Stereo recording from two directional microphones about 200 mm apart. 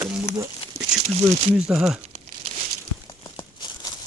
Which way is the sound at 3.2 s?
20° left (ahead or behind).